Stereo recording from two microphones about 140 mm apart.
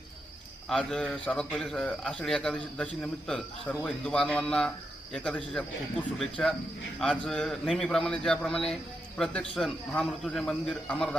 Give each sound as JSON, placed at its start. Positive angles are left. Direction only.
{"t": 0.7, "sound": "a man's voice", "side_deg": 5}